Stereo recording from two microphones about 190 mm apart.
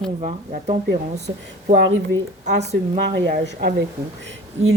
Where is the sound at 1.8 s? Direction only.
70° right (ahead or behind).